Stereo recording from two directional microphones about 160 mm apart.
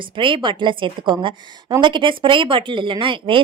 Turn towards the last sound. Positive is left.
turn(degrees=-30)  # may be behind; listen again after turning